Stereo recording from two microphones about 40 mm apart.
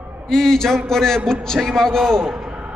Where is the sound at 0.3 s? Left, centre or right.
Centre.